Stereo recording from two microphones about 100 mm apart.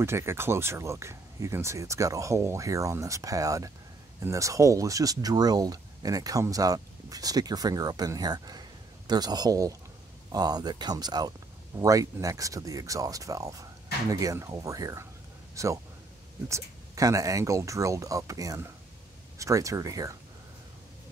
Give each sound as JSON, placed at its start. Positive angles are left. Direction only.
{"t": 0.0, "sound": "a man's voice", "side_deg": -25}